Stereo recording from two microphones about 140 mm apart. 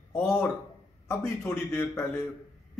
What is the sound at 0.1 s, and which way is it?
A man's voice, 15° left (ahead or behind).